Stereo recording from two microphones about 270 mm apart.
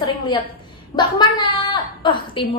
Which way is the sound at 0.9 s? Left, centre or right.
Centre.